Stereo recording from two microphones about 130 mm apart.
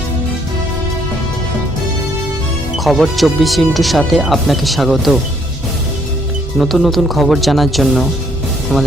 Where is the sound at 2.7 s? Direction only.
Centre (ahead or behind).